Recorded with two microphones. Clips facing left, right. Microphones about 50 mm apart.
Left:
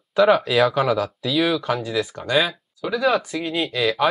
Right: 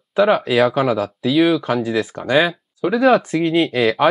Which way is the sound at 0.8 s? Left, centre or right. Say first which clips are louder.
Right 3 dB; centre.